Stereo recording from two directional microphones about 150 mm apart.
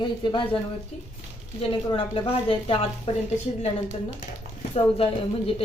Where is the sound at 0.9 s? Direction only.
45° left (ahead or behind).